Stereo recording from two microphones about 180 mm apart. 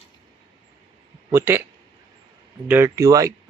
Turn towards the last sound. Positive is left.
turn(degrees=-15)  # may be behind; listen again after turning